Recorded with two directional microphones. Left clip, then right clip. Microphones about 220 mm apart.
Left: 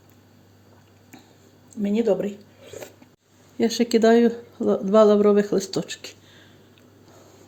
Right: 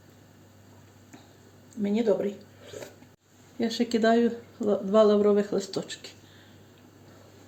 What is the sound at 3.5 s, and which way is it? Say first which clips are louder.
Speech: left 7 dB; 50° left (ahead or behind).